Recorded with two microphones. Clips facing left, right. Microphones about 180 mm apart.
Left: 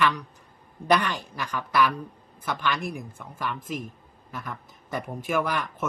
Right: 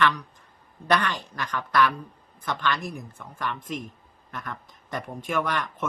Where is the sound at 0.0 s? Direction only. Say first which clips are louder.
Right 1 dB; 10° left (ahead or behind).